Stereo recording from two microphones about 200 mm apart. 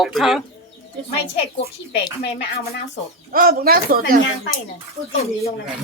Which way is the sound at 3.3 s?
50° right (ahead or behind).